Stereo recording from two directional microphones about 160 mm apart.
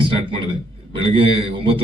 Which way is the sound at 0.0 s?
35° right (ahead or behind).